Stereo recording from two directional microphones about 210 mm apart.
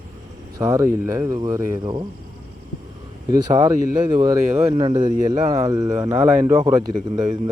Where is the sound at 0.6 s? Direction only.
15° right (ahead or behind).